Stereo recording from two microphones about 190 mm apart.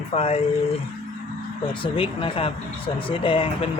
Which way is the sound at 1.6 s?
25° left (ahead or behind).